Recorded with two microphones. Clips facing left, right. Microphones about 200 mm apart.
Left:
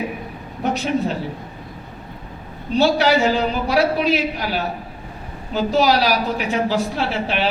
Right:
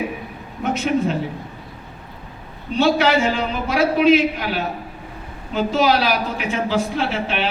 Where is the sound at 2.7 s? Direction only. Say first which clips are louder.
Left 1 dB; 40° left (ahead or behind).